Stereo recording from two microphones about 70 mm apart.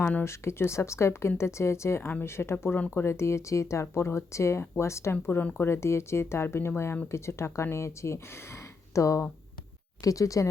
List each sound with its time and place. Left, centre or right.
0.0 s speech: left
0.3 s speech: left
5.2 s speech: left